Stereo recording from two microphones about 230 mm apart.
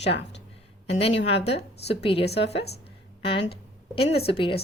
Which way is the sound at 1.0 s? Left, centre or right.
Left.